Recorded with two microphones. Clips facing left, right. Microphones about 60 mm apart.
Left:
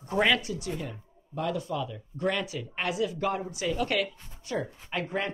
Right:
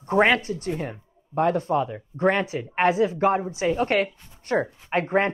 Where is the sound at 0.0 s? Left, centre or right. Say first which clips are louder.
Right 6 dB; right.